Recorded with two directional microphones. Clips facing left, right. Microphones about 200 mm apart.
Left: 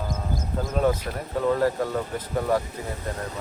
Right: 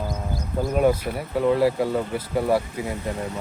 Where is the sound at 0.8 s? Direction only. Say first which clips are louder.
Right 3 dB; 10° right (ahead or behind).